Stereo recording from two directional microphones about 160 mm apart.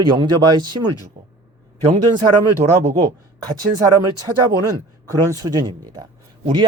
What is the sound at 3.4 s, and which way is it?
Speech, 25° right (ahead or behind).